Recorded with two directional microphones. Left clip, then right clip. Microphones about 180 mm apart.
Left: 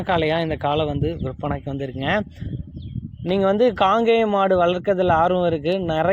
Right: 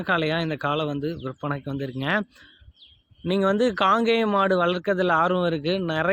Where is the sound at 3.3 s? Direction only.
5° right (ahead or behind).